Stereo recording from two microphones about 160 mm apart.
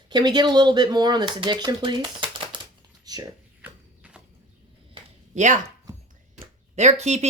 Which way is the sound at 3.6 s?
5° right (ahead or behind).